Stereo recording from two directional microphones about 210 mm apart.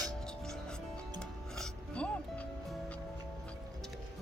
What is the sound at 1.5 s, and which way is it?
Music, 5° left (ahead or behind).